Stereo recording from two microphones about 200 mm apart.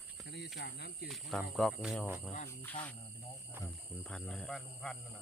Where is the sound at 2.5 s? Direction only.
10° left (ahead or behind).